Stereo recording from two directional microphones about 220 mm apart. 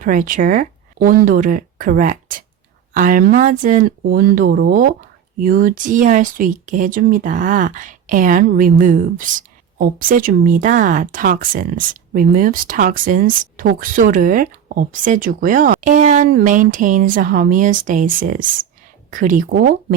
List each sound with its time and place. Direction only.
0.0 s speech: 35° right (ahead or behind)